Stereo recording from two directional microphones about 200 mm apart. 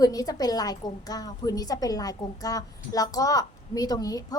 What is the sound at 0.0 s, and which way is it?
A woman's voice, 15° left (ahead or behind).